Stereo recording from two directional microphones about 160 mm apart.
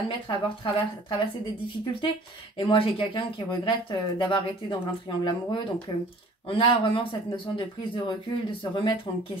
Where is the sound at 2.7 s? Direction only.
35° left (ahead or behind).